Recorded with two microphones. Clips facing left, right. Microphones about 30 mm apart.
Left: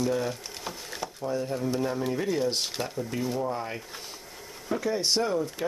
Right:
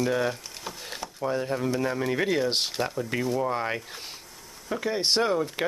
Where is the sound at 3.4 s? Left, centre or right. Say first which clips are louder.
Right 3 dB; right.